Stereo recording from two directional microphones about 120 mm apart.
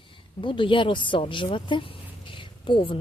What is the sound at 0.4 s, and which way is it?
Speech, 45° left (ahead or behind).